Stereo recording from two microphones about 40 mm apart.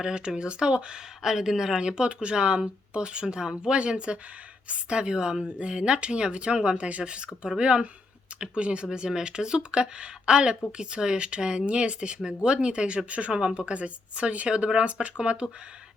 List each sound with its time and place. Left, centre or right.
0.0 s speech: right
1.2 s speech: centre
1.8 s speech: right